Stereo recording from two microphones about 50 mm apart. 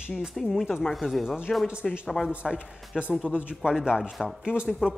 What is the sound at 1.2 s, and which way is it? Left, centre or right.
Speech, centre.